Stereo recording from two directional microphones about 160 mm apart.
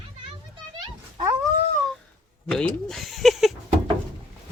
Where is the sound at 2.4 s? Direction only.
Centre (ahead or behind).